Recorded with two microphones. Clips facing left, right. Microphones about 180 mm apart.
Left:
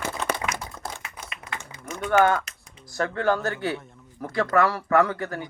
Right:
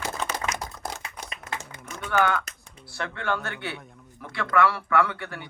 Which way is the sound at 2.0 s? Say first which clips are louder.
Left 4 dB; 40° left (ahead or behind).